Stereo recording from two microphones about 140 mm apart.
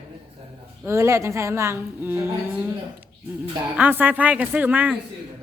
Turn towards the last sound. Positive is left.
turn(degrees=-10)  # may be behind; listen again after turning